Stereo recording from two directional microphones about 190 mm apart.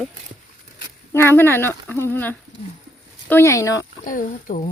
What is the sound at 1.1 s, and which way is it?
Speech, 10° left (ahead or behind).